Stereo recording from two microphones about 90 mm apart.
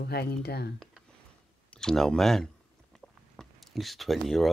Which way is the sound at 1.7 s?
5° left (ahead or behind).